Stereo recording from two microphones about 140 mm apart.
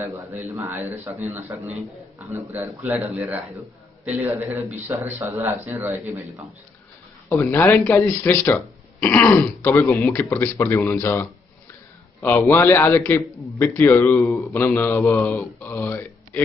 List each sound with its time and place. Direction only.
0.0 s a man's voice: 15° right (ahead or behind)
7.2 s a man's voice: 15° left (ahead or behind)